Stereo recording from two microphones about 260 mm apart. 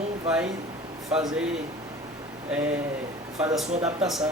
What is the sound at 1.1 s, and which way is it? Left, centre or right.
Speech, centre.